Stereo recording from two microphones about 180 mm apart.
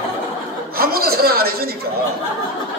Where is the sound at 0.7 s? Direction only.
55° right (ahead or behind).